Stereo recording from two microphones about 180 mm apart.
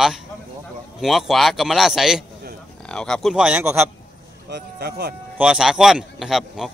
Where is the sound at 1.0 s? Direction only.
Centre (ahead or behind).